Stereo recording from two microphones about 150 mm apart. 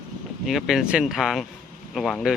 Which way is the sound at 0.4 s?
Centre (ahead or behind).